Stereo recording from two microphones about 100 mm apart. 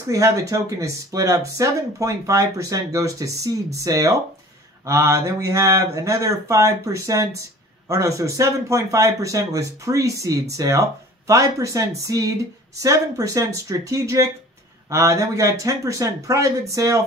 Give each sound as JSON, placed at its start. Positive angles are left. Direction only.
{"t": 0.0, "sound": "speech", "side_deg": -30}